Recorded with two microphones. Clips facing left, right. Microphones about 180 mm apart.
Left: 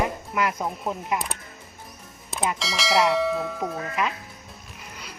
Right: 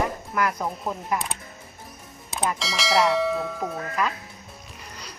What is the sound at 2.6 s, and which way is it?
Speech, centre (ahead or behind).